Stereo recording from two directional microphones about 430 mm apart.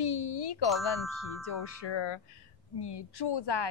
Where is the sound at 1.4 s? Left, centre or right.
Left.